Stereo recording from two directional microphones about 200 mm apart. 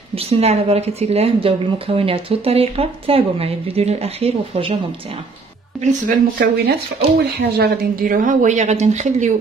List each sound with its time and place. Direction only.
0.1 s a woman's voice: 30° right (ahead or behind)
5.8 s a woman's voice: 45° right (ahead or behind)